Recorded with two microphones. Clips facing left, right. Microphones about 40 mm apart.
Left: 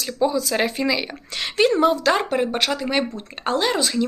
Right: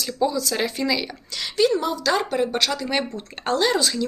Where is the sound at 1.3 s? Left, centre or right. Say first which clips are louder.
Left 2 dB; left.